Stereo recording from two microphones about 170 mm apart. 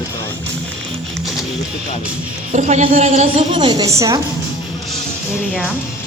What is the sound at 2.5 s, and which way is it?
A woman's voice, 45° right (ahead or behind).